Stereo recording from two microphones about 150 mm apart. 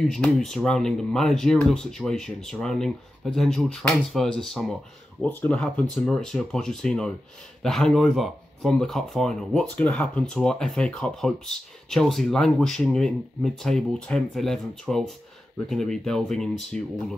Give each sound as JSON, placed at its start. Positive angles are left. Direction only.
{"t": 0.0, "sound": "speech", "side_deg": 5}